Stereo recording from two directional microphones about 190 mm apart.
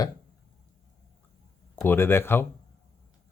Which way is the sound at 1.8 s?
10° left (ahead or behind).